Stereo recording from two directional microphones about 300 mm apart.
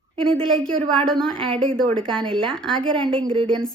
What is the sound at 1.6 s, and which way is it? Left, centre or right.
Speech, centre.